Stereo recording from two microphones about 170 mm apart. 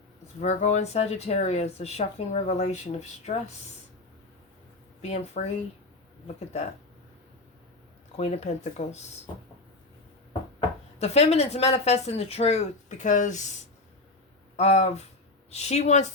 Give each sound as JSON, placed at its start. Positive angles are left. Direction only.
{"t": 0.4, "sound": "speech", "side_deg": 40}
{"t": 5.0, "sound": "speech", "side_deg": 40}
{"t": 8.1, "sound": "speech", "side_deg": 40}
{"t": 11.0, "sound": "speech", "side_deg": 40}
{"t": 14.5, "sound": "speech", "side_deg": 40}